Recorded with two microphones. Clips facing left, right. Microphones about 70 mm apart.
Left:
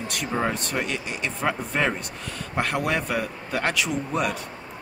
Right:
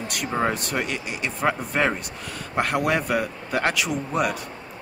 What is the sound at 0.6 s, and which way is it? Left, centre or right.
A man's voice, centre.